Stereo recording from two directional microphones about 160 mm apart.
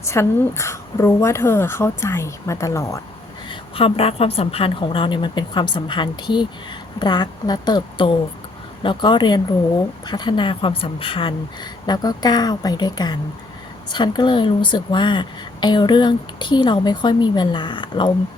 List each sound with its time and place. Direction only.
0.0 s a woman's voice: 15° left (ahead or behind)
3.5 s a woman's voice: 35° left (ahead or behind)